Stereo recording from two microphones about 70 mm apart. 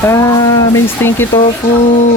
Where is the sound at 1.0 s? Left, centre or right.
Left.